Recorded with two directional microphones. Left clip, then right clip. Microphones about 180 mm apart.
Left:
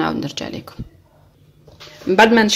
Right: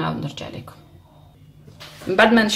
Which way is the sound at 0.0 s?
50° left (ahead or behind).